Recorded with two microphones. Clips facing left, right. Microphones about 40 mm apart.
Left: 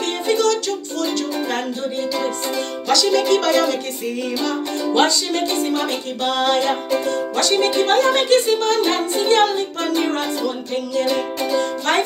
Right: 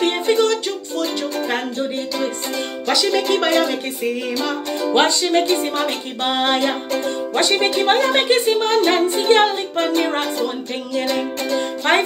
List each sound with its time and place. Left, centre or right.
0.0 s music: right
2.9 s speech: centre
4.9 s speech: right
11.1 s music: centre